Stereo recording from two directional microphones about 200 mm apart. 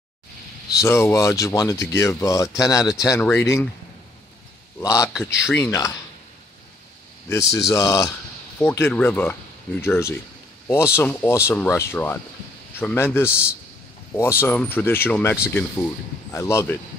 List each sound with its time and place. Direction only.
0.7 s speech: 10° left (ahead or behind)
4.7 s speech: 15° left (ahead or behind)
7.5 s speech: 15° left (ahead or behind)